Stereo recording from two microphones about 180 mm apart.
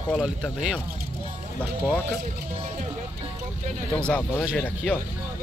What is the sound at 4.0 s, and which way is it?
Speech, 5° left (ahead or behind).